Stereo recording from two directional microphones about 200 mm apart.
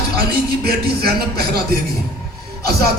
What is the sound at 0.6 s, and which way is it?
Speech, 50° right (ahead or behind).